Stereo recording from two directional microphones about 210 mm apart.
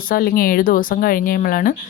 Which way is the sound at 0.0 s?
45° left (ahead or behind).